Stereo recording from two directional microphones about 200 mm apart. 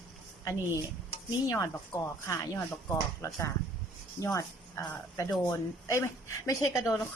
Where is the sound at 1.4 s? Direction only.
15° left (ahead or behind).